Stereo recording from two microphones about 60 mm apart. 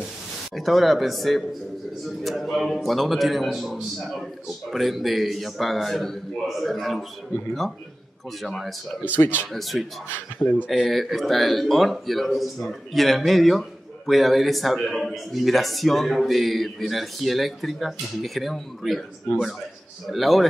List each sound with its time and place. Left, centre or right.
0.6 s speech: centre
8.4 s speech: centre
9.1 s speech: left
9.5 s speech: centre
20.1 s speech: centre